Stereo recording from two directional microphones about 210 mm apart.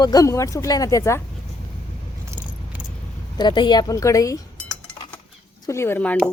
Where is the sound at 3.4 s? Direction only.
20° left (ahead or behind).